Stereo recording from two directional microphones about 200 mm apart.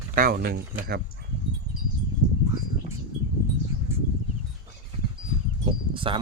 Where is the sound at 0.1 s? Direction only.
45° right (ahead or behind).